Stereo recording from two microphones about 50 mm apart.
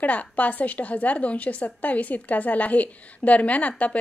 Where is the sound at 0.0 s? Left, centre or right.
Left.